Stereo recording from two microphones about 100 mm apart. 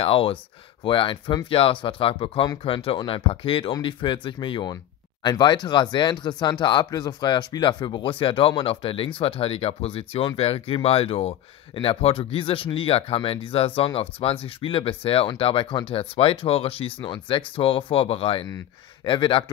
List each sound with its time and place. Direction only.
0.0 s speech: 65° left (ahead or behind)
0.8 s speech: 55° left (ahead or behind)
1.5 s speech: 65° left (ahead or behind)
15.9 s speech: 70° left (ahead or behind)
19.0 s speech: 55° left (ahead or behind)